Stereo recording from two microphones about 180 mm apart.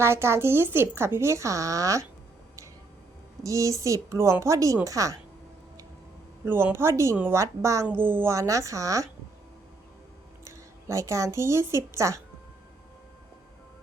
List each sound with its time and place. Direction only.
0.0 s a woman's voice: 15° right (ahead or behind)
3.4 s a woman's voice: 15° right (ahead or behind)
6.4 s a woman's voice: 10° right (ahead or behind)
10.4 s a woman's voice: 15° right (ahead or behind)